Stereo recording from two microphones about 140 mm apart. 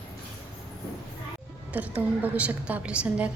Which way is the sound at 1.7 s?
10° right (ahead or behind).